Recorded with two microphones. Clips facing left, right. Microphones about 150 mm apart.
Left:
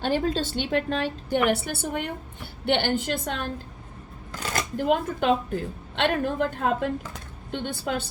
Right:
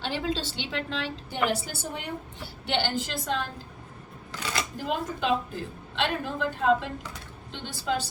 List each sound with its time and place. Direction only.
0.0 s a woman's voice: 50° left (ahead or behind)
1.5 s a woman's voice: 60° left (ahead or behind)
4.5 s a woman's voice: 55° left (ahead or behind)